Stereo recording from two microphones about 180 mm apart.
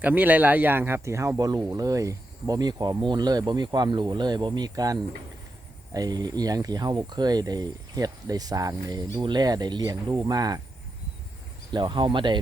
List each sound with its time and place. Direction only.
0.0 s speech: 10° right (ahead or behind)
11.7 s speech: 25° right (ahead or behind)